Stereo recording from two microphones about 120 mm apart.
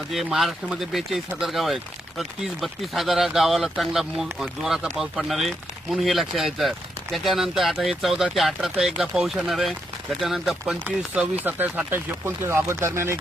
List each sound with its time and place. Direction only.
0.1 s speech: centre (ahead or behind); by 13.1 s 20° right (ahead or behind)